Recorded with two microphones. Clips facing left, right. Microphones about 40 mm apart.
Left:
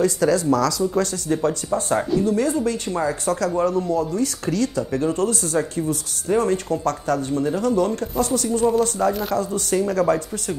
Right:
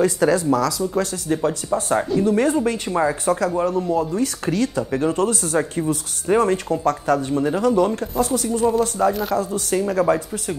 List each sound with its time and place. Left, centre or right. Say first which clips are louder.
0.0 s speech: right 1 dB; right
0.5 s speech: even; centre
2.2 s speech: right 2 dB; right
2.9 s speech: right 3 dB; centre
3.9 s speech: right 1 dB; right
6.7 s speech: right 3 dB; centre